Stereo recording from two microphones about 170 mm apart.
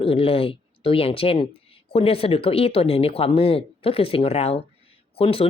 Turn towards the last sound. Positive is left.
turn(degrees=35)  # may be behind; listen again after turning